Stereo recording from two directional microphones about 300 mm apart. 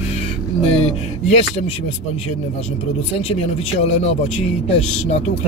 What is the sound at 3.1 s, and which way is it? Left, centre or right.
Speech, centre.